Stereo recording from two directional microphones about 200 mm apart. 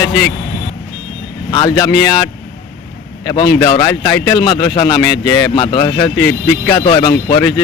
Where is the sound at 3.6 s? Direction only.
20° left (ahead or behind).